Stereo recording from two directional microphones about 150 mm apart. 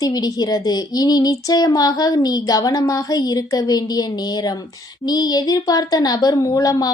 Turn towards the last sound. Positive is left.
turn(degrees=25)  # may be behind; listen again after turning